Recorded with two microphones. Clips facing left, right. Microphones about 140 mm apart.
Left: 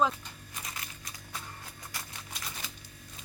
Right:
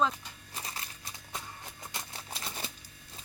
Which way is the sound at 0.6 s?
30° right (ahead or behind).